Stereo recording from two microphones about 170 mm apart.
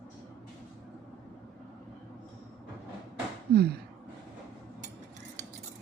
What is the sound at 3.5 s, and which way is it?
Speech, 70° right (ahead or behind).